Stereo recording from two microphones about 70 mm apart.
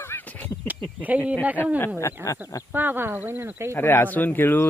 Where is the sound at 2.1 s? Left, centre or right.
Left.